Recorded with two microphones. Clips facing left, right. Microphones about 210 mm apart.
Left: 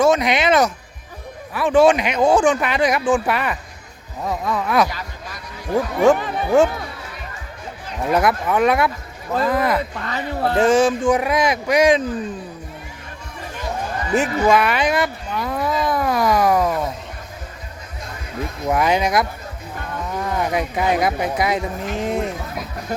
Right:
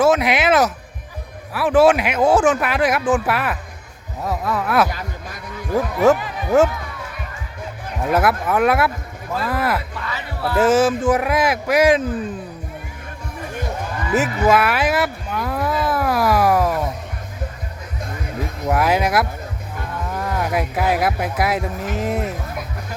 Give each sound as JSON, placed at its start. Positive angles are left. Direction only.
{"t": 0.0, "sound": "speech", "side_deg": -5}
{"t": 4.9, "sound": "a sound", "side_deg": -50}
{"t": 5.7, "sound": "speech", "side_deg": -5}
{"t": 8.1, "sound": "speech", "side_deg": -5}
{"t": 9.9, "sound": "speech", "side_deg": 45}
{"t": 10.6, "sound": "speech", "side_deg": -5}
{"t": 14.1, "sound": "speech", "side_deg": -5}
{"t": 18.7, "sound": "speech", "side_deg": -5}